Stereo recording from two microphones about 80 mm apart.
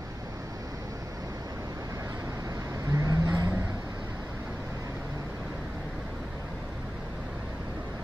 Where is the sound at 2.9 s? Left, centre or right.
Right.